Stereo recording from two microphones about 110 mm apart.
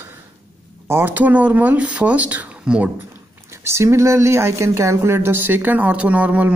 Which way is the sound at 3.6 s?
25° right (ahead or behind).